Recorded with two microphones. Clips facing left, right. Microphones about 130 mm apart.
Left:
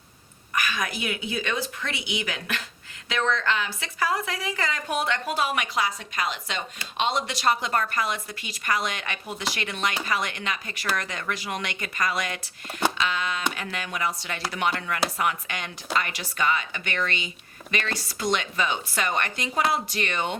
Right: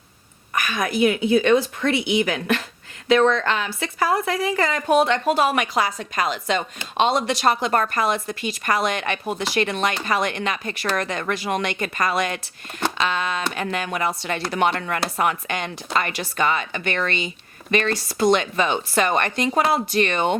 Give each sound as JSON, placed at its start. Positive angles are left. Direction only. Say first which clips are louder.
{"t": 0.5, "sound": "speech", "louder": "right 5 dB", "side_deg": -45}